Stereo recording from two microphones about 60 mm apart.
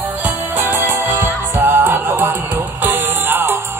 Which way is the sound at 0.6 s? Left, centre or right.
Right.